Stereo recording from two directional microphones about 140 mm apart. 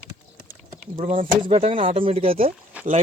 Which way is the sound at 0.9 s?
70° right (ahead or behind).